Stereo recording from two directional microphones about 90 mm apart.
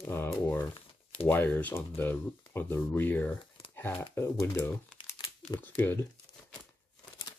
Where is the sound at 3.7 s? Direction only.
25° left (ahead or behind).